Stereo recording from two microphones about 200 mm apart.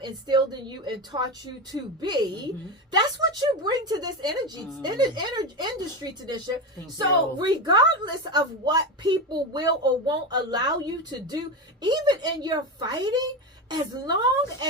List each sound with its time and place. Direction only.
0.0 s a woman's voice: 20° right (ahead or behind)
7.4 s a woman's voice: 20° right (ahead or behind)